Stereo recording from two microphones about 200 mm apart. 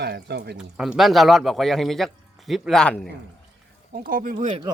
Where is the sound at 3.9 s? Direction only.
45° right (ahead or behind).